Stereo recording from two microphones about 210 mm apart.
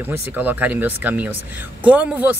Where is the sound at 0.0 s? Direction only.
10° right (ahead or behind).